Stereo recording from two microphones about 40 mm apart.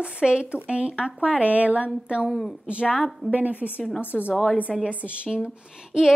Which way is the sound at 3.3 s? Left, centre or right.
Right.